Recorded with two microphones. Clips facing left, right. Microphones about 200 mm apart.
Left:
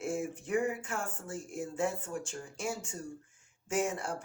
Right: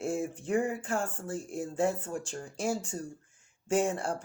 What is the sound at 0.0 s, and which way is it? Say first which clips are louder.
Speech: right 3 dB; 30° right (ahead or behind).